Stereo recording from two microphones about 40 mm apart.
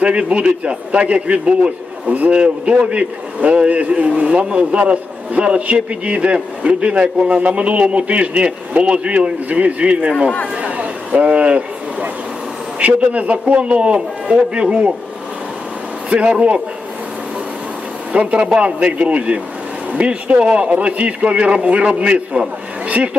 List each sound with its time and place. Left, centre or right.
0.0 s a man's voice: right
2.0 s a man's voice: right
2.3 s a man's voice: right
10.5 s a sound: right
12.8 s a man's voice: right
16.0 s a man's voice: right
18.1 s speech: right
18.3 s a man's voice: right